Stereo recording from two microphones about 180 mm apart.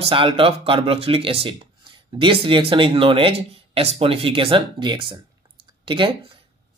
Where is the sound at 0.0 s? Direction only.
30° right (ahead or behind).